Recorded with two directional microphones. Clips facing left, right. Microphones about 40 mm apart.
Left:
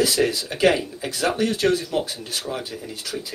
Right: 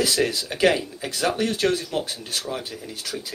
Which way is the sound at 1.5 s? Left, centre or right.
Centre.